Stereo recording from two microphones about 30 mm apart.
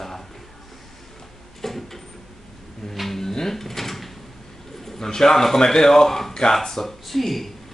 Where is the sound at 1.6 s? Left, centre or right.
Centre.